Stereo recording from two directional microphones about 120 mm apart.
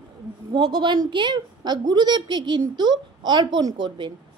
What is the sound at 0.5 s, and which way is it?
A woman's voice, 40° right (ahead or behind).